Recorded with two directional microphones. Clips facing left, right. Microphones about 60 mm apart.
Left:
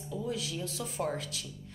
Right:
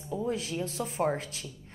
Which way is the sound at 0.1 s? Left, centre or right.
Right.